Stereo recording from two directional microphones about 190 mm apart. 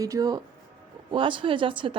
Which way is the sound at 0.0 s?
20° right (ahead or behind).